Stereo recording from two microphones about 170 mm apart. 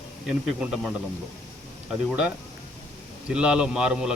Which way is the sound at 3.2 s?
5° right (ahead or behind).